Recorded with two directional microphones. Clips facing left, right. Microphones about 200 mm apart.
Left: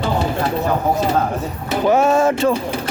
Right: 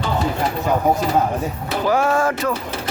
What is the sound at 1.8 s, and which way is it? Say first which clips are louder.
Speech: left 4 dB; 25° left (ahead or behind).